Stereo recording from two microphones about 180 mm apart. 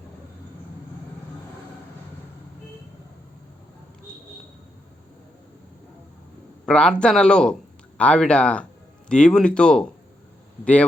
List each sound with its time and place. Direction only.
6.7 s speech: 5° left (ahead or behind)